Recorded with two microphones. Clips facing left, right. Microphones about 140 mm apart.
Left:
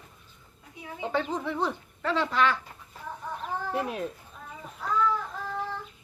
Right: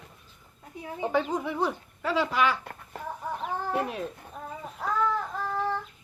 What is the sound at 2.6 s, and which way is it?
Chicken, 60° right (ahead or behind).